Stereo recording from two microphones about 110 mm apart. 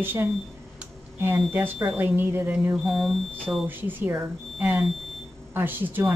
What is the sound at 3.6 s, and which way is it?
Speech, 20° right (ahead or behind).